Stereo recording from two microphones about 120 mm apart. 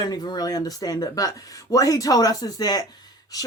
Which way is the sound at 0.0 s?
35° left (ahead or behind).